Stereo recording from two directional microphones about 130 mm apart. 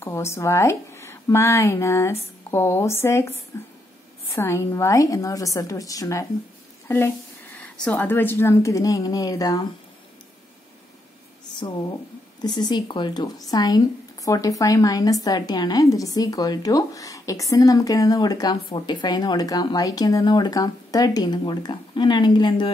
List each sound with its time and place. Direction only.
0.0 s a woman's voice: 20° left (ahead or behind)
4.4 s a woman's voice: 20° left (ahead or behind)
7.5 s a woman's voice: 10° left (ahead or behind); by 9.7 s 30° left (ahead or behind)
12.4 s a woman's voice: 35° left (ahead or behind)